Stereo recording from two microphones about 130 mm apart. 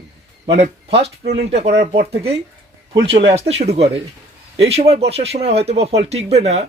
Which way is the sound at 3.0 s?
50° right (ahead or behind).